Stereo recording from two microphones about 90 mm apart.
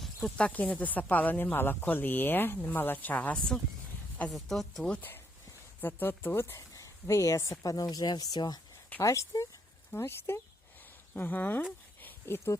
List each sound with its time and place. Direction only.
0.0 s snake: centre (ahead or behind)
0.3 s speech: 15° left (ahead or behind)
4.9 s speech: 20° left (ahead or behind)
6.6 s speech: 35° left (ahead or behind)
9.0 s speech: 35° left (ahead or behind)
12.0 s a sound: 25° left (ahead or behind)